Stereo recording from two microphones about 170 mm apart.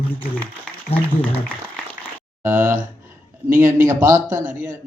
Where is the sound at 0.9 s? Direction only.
35° left (ahead or behind).